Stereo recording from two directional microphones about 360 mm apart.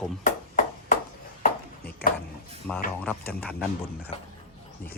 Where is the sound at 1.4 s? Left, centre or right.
Left.